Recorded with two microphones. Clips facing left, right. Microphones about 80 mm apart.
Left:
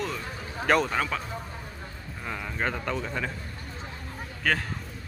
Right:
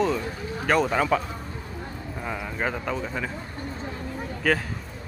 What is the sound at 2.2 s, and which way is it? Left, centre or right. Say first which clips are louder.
Speech: right 2 dB; centre.